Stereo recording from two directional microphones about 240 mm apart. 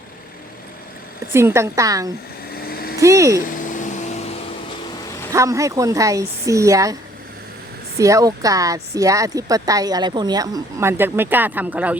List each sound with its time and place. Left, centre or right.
1.3 s speech: centre
2.6 s vehicle: left
3.0 s speech: centre
3.4 s vacuum cleaner: left
5.3 s speech: centre
7.9 s speech: centre